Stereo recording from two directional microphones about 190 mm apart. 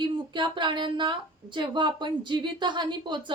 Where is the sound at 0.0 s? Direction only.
25° right (ahead or behind).